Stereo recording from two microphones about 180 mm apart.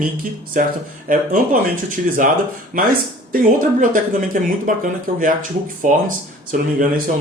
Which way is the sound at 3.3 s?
50° right (ahead or behind).